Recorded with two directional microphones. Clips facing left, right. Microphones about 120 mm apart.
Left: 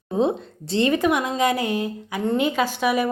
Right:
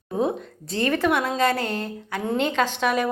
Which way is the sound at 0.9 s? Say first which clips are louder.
Left 1 dB; 15° left (ahead or behind).